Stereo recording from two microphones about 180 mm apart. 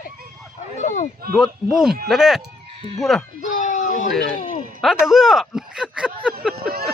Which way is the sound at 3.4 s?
45° left (ahead or behind).